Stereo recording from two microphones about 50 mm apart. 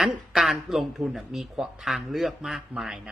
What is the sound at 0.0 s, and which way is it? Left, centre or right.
A man's voice, centre.